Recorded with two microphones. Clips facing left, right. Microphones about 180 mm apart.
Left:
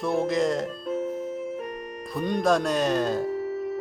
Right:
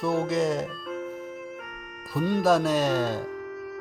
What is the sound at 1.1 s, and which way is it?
Music, 35° left (ahead or behind).